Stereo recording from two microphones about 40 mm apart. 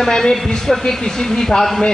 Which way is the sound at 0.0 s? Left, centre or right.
Centre.